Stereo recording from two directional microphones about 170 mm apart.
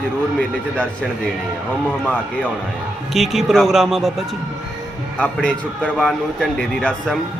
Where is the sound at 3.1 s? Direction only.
Centre (ahead or behind).